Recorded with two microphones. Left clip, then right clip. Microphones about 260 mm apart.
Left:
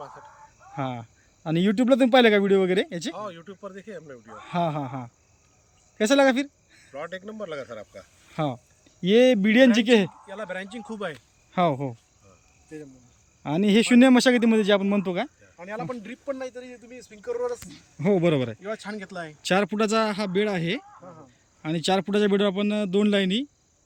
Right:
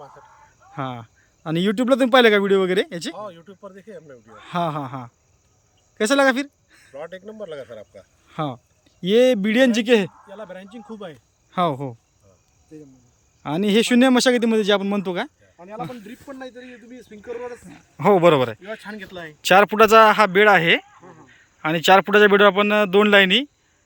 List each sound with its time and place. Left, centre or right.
0.7 s speech: centre
6.0 s a sound: centre
6.9 s speech: centre
8.4 s speech: centre
10.2 s speech: centre
13.4 s speech: centre
15.5 s speech: centre
16.0 s speech: left
17.7 s speech: centre